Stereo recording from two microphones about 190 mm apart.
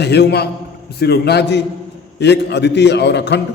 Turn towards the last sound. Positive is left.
turn(degrees=65)  # may be behind; listen again after turning